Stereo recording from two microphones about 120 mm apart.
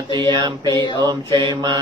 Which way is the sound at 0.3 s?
40° right (ahead or behind).